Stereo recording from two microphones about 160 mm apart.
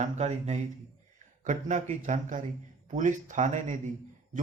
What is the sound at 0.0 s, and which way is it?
A man's voice, 45° right (ahead or behind).